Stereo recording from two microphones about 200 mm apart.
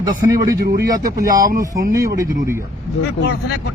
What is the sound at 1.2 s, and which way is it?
Speech, 15° right (ahead or behind).